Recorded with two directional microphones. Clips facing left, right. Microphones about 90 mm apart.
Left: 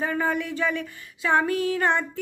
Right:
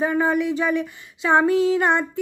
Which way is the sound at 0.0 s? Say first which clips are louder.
Right 5 dB; 15° right (ahead or behind).